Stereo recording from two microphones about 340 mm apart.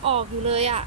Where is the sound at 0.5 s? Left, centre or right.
Centre.